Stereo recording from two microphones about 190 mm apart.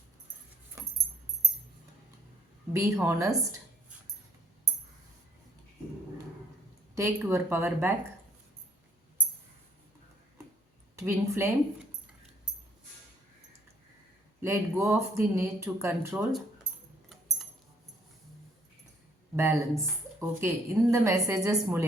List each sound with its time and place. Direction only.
2.7 s speech: 15° right (ahead or behind)
6.9 s speech: 15° right (ahead or behind)
10.9 s speech: 10° right (ahead or behind)
14.4 s speech: 10° right (ahead or behind)
19.4 s speech: 10° right (ahead or behind)